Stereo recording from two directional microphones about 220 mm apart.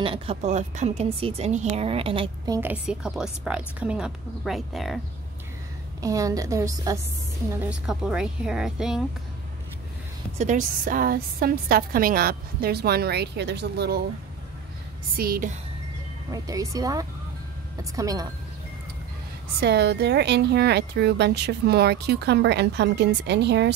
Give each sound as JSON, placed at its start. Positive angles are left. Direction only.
{"t": 0.0, "sound": "speech", "side_deg": -25}
{"t": 5.9, "sound": "a woman's voice", "side_deg": -15}
{"t": 10.4, "sound": "a woman's voice", "side_deg": -35}
{"t": 15.1, "sound": "speech", "side_deg": -40}
{"t": 16.3, "sound": "a woman's voice", "side_deg": -15}
{"t": 19.6, "sound": "a woman's voice", "side_deg": -50}